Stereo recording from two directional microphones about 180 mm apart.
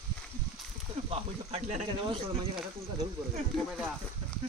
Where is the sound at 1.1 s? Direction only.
35° right (ahead or behind).